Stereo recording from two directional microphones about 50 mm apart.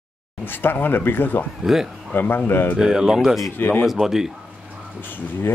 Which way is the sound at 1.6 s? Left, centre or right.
Centre.